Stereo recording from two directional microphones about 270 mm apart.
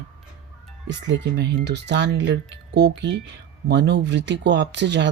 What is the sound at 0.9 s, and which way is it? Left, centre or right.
Speech, right.